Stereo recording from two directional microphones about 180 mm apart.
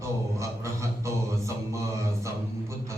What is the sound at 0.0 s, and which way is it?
Music, 15° right (ahead or behind).